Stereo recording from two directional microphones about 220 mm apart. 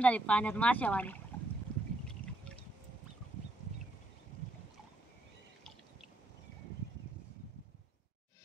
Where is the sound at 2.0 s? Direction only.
5° left (ahead or behind).